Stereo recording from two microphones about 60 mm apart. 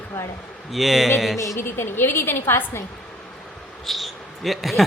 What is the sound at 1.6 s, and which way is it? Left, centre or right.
A woman's voice, left.